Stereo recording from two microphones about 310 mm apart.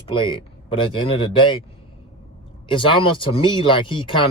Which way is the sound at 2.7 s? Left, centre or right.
Centre.